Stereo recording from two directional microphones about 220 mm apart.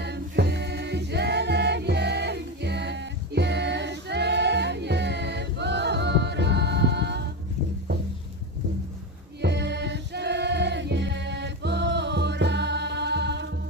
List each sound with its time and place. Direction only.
0.0 s music: 50° right (ahead or behind)
9.4 s music: 50° right (ahead or behind)